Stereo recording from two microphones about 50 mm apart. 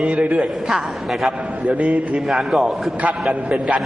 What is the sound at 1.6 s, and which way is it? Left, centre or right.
Speech, right.